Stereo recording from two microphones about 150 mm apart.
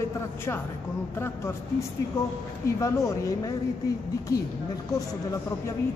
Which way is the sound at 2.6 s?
20° left (ahead or behind).